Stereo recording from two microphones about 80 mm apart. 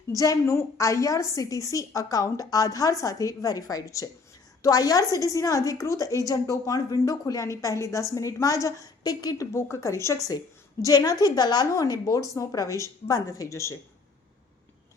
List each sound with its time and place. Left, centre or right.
0.1 s a woman's voice: left
9.5 s a woman's voice: left
10.8 s a woman's voice: left
11.7 s a woman's voice: left